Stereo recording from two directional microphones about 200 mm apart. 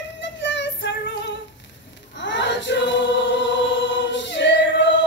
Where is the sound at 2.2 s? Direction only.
65° left (ahead or behind).